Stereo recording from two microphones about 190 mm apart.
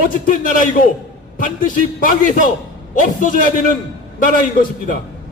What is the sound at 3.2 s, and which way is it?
Speech, 45° left (ahead or behind).